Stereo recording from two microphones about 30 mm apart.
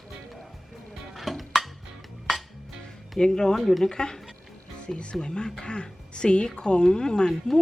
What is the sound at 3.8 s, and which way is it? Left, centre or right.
Speech, left.